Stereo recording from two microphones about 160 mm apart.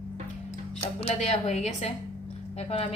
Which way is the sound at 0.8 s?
40° left (ahead or behind).